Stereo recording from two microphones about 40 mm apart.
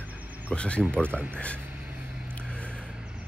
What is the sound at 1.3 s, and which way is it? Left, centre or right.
Speech, left.